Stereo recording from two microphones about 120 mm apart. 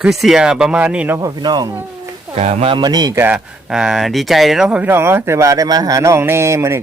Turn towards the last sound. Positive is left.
turn(degrees=-25)  # may be behind; listen again after turning